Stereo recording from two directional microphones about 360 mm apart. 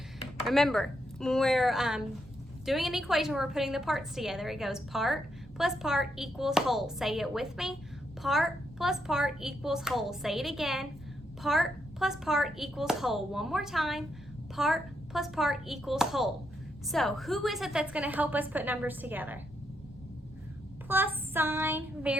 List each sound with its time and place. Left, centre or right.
0.4 s a woman's voice: centre
20.8 s a woman's voice: centre